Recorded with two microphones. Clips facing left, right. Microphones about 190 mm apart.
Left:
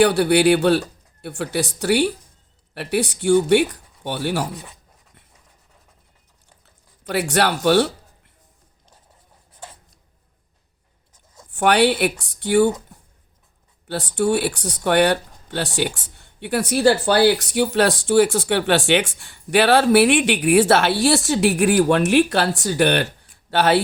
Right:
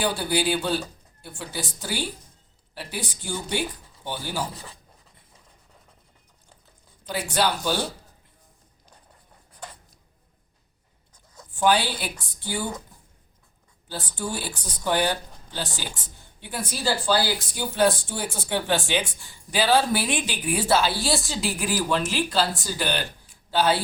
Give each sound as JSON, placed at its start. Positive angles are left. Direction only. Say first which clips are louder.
{"t": 0.0, "sound": "speech", "louder": "left 10 dB", "side_deg": 70}
{"t": 7.0, "sound": "speech", "louder": "left 5 dB", "side_deg": 70}
{"t": 11.5, "sound": "speech", "louder": "left 6 dB", "side_deg": 70}